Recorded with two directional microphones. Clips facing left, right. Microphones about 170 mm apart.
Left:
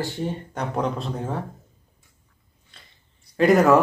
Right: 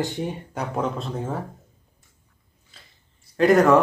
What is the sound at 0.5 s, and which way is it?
Speech, 5° right (ahead or behind).